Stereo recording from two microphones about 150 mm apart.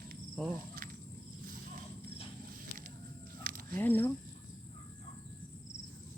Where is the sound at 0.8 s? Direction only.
75° right (ahead or behind).